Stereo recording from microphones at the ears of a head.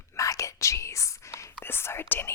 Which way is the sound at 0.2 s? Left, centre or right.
Left.